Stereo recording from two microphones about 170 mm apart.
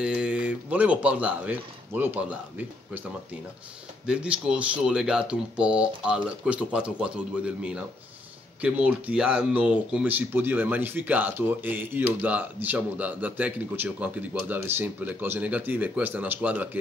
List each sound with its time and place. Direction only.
0.0 s speech: 5° right (ahead or behind)
4.0 s speech: 5° right (ahead or behind)